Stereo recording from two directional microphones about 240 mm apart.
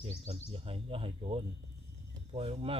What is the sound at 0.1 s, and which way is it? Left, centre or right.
Speech, right.